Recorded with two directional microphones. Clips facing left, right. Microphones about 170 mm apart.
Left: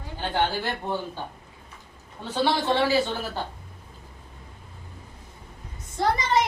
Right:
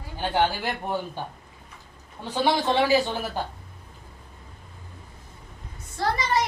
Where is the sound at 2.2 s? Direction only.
15° right (ahead or behind).